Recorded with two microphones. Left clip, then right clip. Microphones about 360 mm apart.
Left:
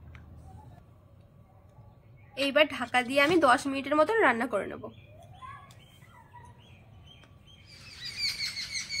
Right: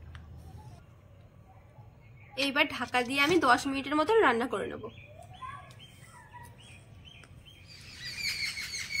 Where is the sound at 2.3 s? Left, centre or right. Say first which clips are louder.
Left 3 dB; centre.